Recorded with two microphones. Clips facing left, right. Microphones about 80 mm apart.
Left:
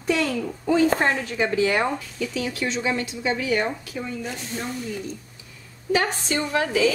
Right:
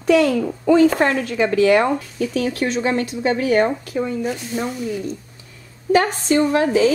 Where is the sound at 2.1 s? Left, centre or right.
Right.